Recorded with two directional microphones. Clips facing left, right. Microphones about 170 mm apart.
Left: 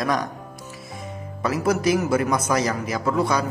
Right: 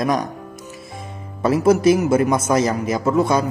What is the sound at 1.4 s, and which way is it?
A man's voice, 25° right (ahead or behind).